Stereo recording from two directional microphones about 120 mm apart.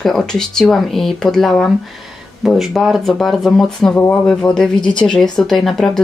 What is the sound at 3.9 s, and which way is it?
Speech, 15° left (ahead or behind).